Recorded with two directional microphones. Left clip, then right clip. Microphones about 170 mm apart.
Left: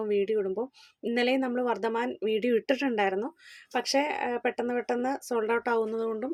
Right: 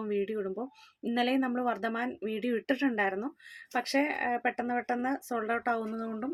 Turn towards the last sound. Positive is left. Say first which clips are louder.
# left 7 dB
turn(degrees=15)  # may be behind; listen again after turning